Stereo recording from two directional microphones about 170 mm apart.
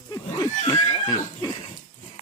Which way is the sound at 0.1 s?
20° left (ahead or behind).